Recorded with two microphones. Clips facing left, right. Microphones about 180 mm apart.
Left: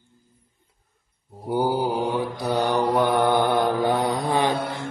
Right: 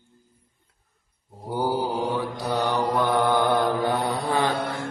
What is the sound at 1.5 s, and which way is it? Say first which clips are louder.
Mantra: left 3 dB; 10° left (ahead or behind).